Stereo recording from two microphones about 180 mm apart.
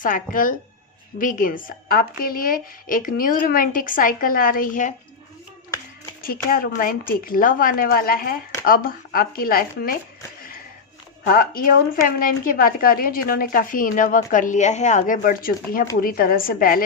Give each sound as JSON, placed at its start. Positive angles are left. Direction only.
{"t": 0.0, "sound": "a woman's voice", "side_deg": 50}
{"t": 6.2, "sound": "a woman's voice", "side_deg": 55}
{"t": 11.3, "sound": "a woman's voice", "side_deg": 55}